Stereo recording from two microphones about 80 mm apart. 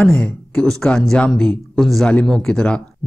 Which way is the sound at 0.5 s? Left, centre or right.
Centre.